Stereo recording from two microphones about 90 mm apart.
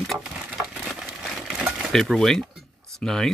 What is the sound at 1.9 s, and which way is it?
Speech, 5° left (ahead or behind).